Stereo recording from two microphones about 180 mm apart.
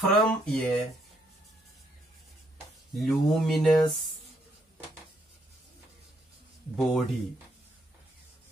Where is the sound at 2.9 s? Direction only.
Centre (ahead or behind).